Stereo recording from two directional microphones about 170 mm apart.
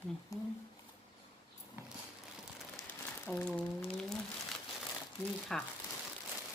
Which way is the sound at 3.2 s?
10° left (ahead or behind).